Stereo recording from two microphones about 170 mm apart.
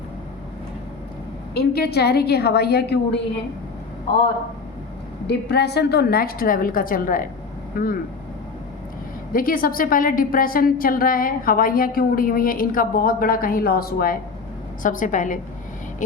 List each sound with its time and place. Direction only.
1.5 s a woman's voice: 70° left (ahead or behind)
5.2 s a woman's voice: 80° left; by 7.9 s 55° left (ahead or behind)
9.3 s a woman's voice: 55° left (ahead or behind)